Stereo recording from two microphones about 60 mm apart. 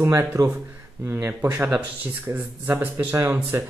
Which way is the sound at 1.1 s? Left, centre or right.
Right.